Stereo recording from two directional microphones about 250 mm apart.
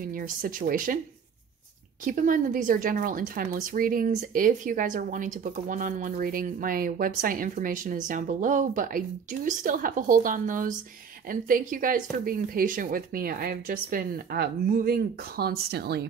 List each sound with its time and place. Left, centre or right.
0.0 s speech: right
2.0 s speech: right